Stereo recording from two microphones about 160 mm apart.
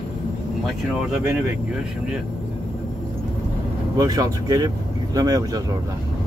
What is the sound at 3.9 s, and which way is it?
Speech, 25° right (ahead or behind).